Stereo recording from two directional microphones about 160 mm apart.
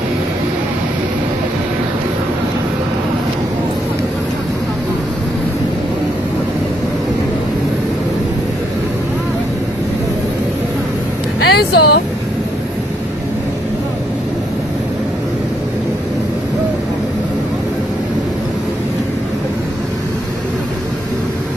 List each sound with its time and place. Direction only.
11.4 s vehicle: 90° left